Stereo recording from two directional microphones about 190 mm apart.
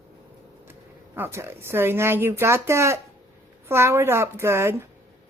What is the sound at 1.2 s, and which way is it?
Speech, 10° right (ahead or behind).